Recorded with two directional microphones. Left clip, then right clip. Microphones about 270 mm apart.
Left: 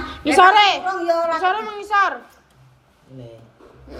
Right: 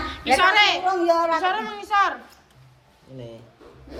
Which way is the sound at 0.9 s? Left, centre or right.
Right.